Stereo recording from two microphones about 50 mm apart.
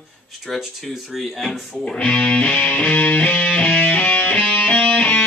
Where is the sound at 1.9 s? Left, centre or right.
Left.